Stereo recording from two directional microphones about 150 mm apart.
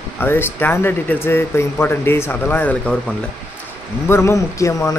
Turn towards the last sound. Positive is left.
turn(degrees=20)  # may be behind; listen again after turning